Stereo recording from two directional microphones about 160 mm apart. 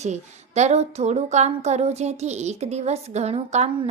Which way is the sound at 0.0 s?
45° right (ahead or behind).